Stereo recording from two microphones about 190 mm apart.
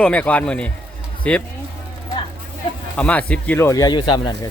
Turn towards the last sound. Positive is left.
turn(degrees=20)  # may be behind; listen again after turning